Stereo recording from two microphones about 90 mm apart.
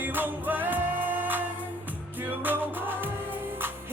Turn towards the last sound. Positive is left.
turn(degrees=-20)  # may be behind; listen again after turning